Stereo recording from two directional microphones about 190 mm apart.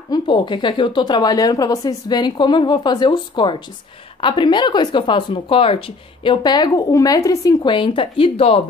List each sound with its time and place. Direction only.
0.1 s speech: 25° left (ahead or behind)